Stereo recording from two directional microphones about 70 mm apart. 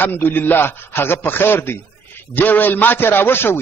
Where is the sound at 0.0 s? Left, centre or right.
Left.